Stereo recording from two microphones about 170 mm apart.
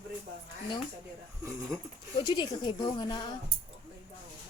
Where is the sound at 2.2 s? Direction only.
25° left (ahead or behind).